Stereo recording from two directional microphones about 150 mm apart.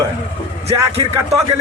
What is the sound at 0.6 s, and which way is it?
Speech, 45° right (ahead or behind).